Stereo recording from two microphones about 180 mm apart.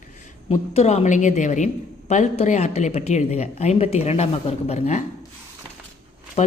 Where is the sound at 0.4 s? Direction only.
35° left (ahead or behind).